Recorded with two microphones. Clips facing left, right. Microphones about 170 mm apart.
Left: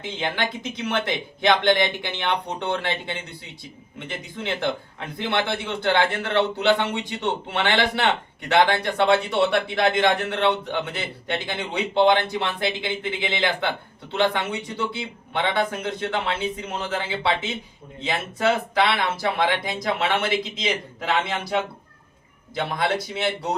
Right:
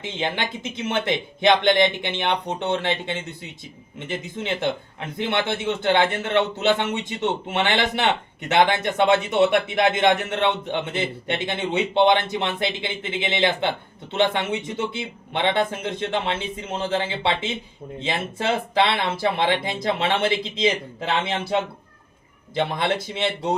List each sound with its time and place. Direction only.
0.0 s a man's voice: 20° right (ahead or behind)
22.5 s a man's voice: 25° right (ahead or behind)